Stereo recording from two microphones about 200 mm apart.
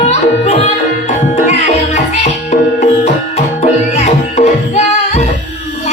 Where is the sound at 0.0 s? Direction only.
30° left (ahead or behind).